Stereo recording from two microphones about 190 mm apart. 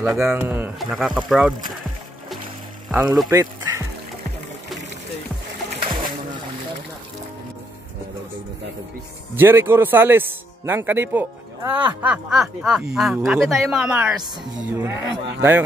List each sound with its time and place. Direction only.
0.0 s a man's voice: 10° right (ahead or behind)
2.9 s a woman's voice: 5° right (ahead or behind)
3.3 s music: 15° right (ahead or behind)
9.3 s a man's voice: 10° right (ahead or behind)